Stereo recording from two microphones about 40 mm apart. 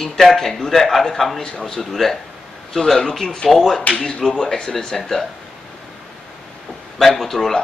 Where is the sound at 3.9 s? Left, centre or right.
Centre.